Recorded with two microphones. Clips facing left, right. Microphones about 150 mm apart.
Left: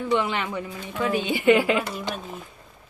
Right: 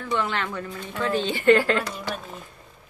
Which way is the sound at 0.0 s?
15° left (ahead or behind).